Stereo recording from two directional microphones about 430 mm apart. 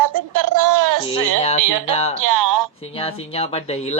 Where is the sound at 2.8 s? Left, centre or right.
Centre.